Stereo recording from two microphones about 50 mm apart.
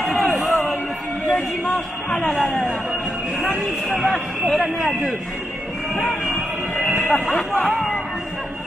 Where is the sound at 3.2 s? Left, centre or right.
Centre.